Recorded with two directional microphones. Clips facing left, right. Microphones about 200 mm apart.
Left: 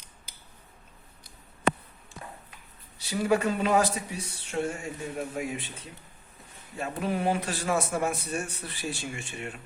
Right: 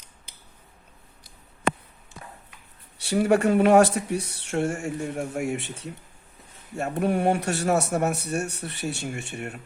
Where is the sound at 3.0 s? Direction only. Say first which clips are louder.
Right 5 dB; 70° right (ahead or behind).